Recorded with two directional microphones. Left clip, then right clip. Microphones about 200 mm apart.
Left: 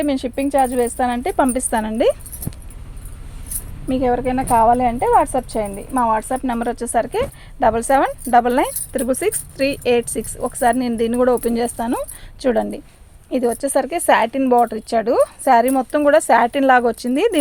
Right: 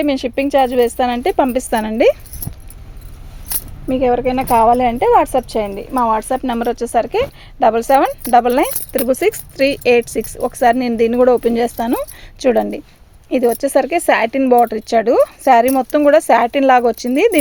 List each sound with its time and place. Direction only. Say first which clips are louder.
0.0 s speech: right 4 dB; 35° right (ahead or behind)
3.8 s speech: right 4 dB; 30° right (ahead or behind)
4.3 s speech: right 1 dB; 45° right (ahead or behind); by 17.3 s 25° right (ahead or behind)